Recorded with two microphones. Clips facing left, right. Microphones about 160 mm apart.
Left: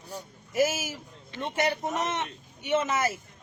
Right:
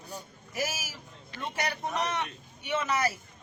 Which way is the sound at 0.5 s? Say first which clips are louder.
Left 9 dB; 25° left (ahead or behind).